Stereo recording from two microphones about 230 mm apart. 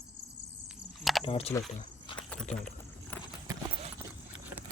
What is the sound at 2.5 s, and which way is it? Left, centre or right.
Vehicle, centre.